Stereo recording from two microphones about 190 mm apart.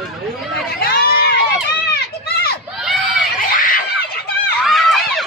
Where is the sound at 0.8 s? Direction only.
50° left (ahead or behind).